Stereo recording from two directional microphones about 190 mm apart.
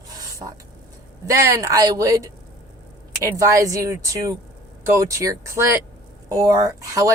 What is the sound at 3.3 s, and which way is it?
A man's voice, 15° right (ahead or behind).